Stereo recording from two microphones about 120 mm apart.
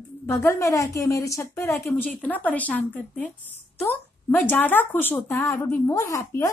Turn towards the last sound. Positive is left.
turn(degrees=25)  # may be behind; listen again after turning